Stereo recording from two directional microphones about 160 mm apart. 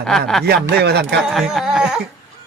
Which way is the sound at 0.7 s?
90° right.